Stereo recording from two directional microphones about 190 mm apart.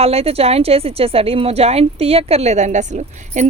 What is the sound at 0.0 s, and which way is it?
A woman's voice, 30° right (ahead or behind).